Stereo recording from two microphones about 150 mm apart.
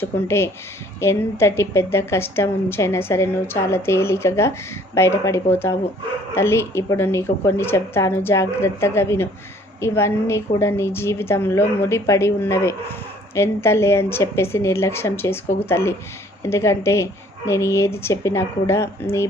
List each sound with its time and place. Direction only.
0.0 s a woman's voice: 15° left (ahead or behind)